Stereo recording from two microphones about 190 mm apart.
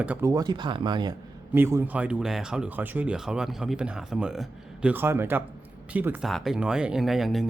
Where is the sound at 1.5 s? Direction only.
10° right (ahead or behind).